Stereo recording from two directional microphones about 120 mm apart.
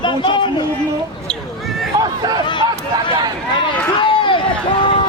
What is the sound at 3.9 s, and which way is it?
Run, 45° left (ahead or behind).